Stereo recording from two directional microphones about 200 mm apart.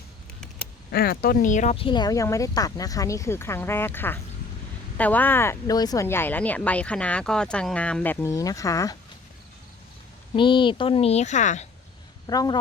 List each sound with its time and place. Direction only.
0.9 s speech: 50° left (ahead or behind); by 9.0 s 15° left (ahead or behind)
10.3 s a woman's voice: 25° left (ahead or behind)
12.3 s a woman's voice: 20° left (ahead or behind)